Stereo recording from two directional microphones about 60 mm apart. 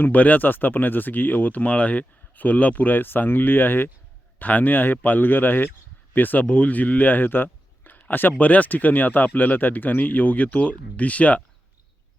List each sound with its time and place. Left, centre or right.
0.0 s speech: left